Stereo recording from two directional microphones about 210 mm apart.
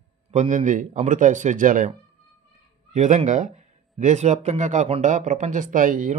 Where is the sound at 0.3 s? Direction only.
35° right (ahead or behind).